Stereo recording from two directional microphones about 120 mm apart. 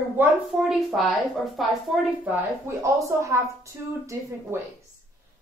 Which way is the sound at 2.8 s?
25° right (ahead or behind).